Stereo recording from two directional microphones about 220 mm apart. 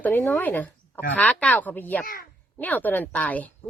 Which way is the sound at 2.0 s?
40° left (ahead or behind).